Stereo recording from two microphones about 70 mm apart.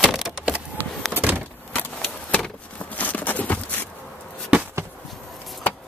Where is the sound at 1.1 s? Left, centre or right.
Right.